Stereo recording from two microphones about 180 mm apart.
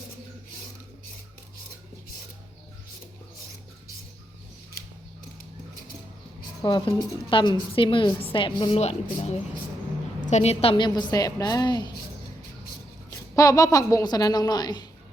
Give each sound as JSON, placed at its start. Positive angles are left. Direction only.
{"t": 6.6, "sound": "a woman's voice", "side_deg": 25}
{"t": 8.8, "sound": "a woman's voice", "side_deg": 35}
{"t": 13.1, "sound": "a woman's voice", "side_deg": 20}